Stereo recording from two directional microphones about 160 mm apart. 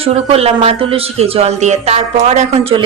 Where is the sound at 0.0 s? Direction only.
40° right (ahead or behind).